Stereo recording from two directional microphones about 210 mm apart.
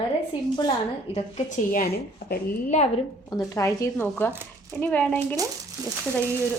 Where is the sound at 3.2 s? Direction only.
15° left (ahead or behind).